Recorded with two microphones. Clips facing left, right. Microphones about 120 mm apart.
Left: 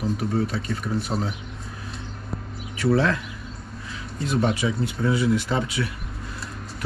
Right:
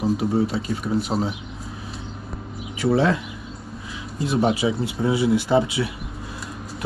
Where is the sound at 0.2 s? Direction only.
20° right (ahead or behind).